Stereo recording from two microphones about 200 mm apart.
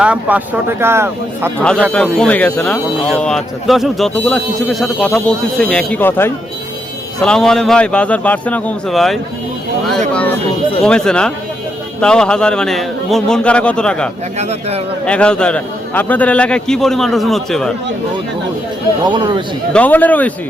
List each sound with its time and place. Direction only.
0.0 s speech: 5° right (ahead or behind)
1.9 s speech: 5° left (ahead or behind)
19.0 s a man's voice: 25° right (ahead or behind)
19.7 s speech: 10° left (ahead or behind)